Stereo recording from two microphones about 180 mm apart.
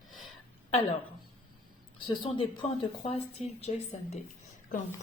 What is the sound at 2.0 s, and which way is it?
A woman's voice, 30° left (ahead or behind).